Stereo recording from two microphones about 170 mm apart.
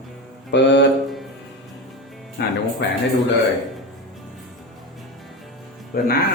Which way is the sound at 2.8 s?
90° left.